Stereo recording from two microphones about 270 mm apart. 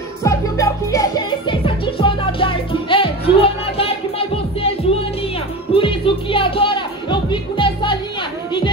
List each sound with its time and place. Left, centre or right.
0.2 s music: centre